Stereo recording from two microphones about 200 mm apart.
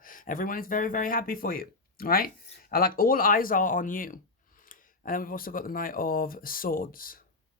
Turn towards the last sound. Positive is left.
turn(degrees=45)  # may be behind; listen again after turning